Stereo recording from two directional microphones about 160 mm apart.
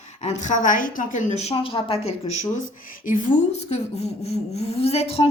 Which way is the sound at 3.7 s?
40° left (ahead or behind).